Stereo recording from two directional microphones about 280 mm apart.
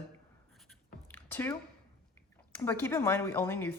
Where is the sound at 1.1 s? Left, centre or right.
Centre.